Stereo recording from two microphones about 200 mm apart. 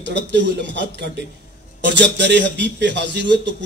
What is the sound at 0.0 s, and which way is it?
Speech, 60° right (ahead or behind).